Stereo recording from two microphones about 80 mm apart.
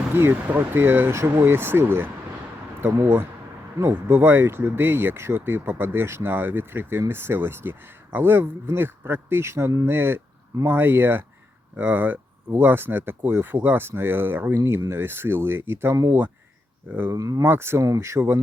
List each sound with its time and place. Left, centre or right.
0.1 s speech: right
17.1 s speech: right
17.4 s speech: right